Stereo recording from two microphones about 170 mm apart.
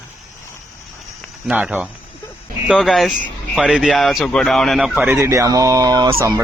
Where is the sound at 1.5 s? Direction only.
5° right (ahead or behind).